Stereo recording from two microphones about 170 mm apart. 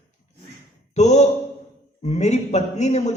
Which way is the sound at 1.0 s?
40° left (ahead or behind).